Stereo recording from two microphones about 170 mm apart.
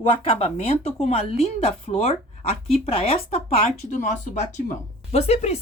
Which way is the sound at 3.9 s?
45° left (ahead or behind).